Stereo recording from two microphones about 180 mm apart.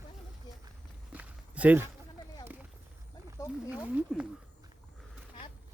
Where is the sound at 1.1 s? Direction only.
10° right (ahead or behind).